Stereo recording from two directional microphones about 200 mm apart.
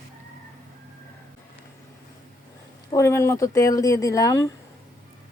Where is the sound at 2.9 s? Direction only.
15° left (ahead or behind).